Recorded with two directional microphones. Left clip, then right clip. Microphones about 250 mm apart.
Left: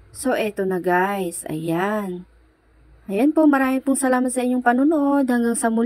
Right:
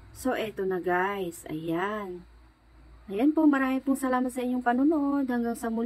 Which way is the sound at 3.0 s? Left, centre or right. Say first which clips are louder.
Left 7 dB; left.